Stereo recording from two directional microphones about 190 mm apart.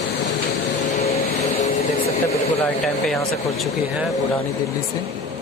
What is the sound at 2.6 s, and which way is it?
Speech, 10° left (ahead or behind).